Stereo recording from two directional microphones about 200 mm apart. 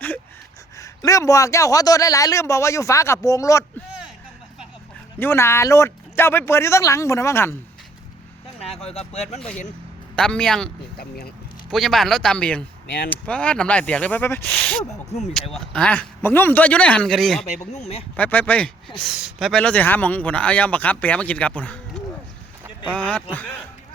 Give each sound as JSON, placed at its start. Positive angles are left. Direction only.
{"t": 0.8, "sound": "speech", "side_deg": 15}
{"t": 5.2, "sound": "speech", "side_deg": 15}
{"t": 8.6, "sound": "speech", "side_deg": 30}
{"t": 10.2, "sound": "speech", "side_deg": 5}
{"t": 11.7, "sound": "speech", "side_deg": 0}
{"t": 17.7, "sound": "speech", "side_deg": 35}
{"t": 18.2, "sound": "speech", "side_deg": 10}